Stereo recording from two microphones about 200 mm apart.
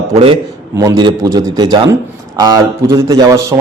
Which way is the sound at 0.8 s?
20° right (ahead or behind).